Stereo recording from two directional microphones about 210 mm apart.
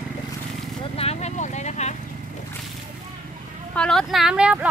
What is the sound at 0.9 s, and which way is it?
Vehicle, 30° left (ahead or behind).